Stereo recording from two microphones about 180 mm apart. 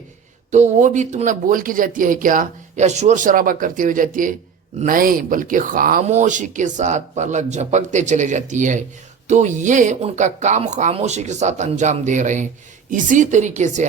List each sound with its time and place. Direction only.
0.5 s speech: 40° right (ahead or behind)